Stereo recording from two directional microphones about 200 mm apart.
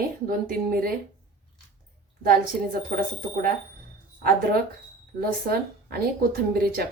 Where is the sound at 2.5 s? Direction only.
5° right (ahead or behind).